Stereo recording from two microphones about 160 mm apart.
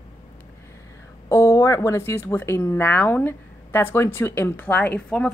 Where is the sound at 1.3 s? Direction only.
20° left (ahead or behind).